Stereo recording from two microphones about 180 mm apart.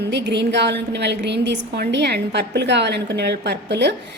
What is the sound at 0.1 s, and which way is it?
A woman's voice, 75° right (ahead or behind).